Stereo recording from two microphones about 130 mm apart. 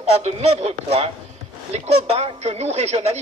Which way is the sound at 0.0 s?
55° right (ahead or behind).